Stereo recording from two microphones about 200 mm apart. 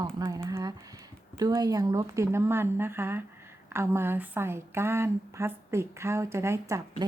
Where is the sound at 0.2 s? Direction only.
15° right (ahead or behind).